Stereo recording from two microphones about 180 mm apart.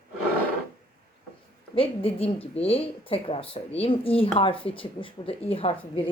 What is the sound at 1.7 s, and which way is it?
A woman's voice, 30° left (ahead or behind).